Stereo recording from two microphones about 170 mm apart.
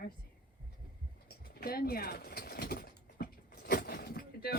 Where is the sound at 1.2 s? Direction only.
65° left (ahead or behind).